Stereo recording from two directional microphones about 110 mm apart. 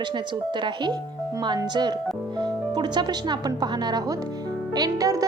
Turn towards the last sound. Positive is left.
turn(degrees=-35)  # may be behind; listen again after turning